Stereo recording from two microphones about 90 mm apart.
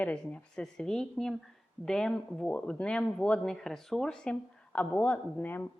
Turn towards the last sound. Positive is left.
turn(degrees=20)  # may be behind; listen again after turning